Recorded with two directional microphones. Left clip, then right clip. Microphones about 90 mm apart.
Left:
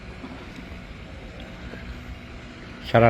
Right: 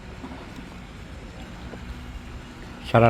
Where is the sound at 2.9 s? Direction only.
30° right (ahead or behind).